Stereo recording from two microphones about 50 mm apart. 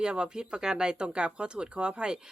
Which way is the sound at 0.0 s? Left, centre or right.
Centre.